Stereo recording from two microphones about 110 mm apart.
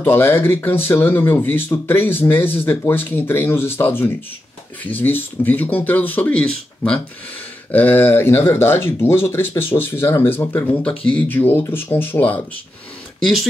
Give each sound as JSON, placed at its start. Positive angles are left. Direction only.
{"t": 0.0, "sound": "speech", "side_deg": 20}